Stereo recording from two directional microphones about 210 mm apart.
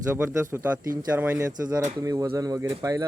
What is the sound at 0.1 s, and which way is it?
Speech, 10° right (ahead or behind).